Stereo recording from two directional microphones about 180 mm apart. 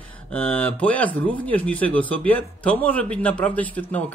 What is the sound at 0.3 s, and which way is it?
Speech, 10° left (ahead or behind).